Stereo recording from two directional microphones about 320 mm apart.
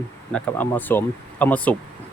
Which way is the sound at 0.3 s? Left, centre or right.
Centre.